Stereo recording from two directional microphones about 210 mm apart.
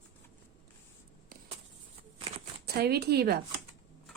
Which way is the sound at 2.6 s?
50° right (ahead or behind).